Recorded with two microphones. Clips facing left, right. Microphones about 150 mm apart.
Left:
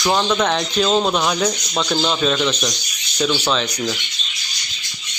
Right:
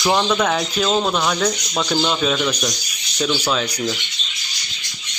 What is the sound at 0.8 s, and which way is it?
Speech, 5° left (ahead or behind).